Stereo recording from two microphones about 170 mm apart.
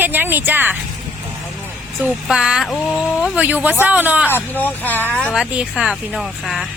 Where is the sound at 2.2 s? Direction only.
5° right (ahead or behind).